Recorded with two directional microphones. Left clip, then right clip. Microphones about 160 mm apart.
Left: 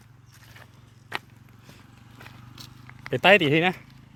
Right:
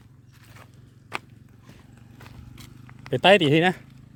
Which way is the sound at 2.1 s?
5° right (ahead or behind).